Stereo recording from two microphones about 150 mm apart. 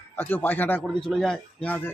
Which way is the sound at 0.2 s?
15° left (ahead or behind).